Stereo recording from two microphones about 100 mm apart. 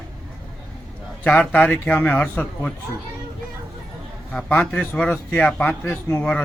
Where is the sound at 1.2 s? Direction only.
15° left (ahead or behind).